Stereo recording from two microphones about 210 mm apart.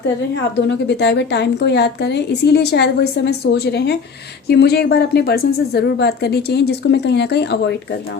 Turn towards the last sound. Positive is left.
turn(degrees=55)  # may be behind; listen again after turning